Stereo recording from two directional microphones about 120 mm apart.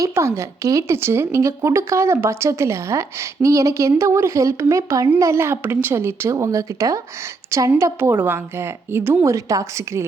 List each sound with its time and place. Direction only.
0.0 s speech: 25° right (ahead or behind)